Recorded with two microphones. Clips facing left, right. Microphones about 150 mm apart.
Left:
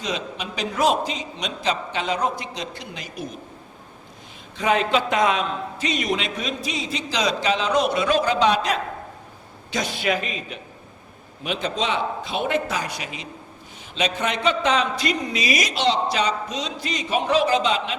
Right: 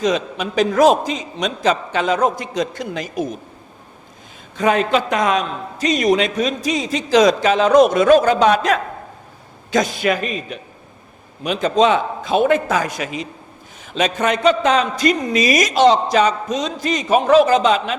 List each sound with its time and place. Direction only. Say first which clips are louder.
0.0 s a man's voice: right 9 dB; 45° right (ahead or behind)
4.5 s a man's voice: right 4 dB; 45° right (ahead or behind)